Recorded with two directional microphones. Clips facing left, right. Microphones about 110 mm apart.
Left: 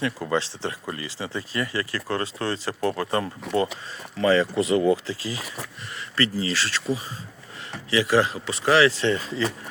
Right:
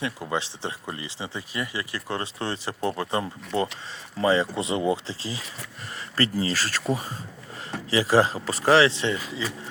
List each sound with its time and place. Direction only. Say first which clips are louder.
0.0 s speech: left 3 dB; 15° right (ahead or behind); by 7.1 s 45° right (ahead or behind)
7.9 s speech: even; 35° right (ahead or behind); by 9.4 s 15° right (ahead or behind)